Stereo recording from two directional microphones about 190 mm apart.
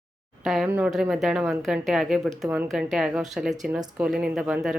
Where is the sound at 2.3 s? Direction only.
15° right (ahead or behind).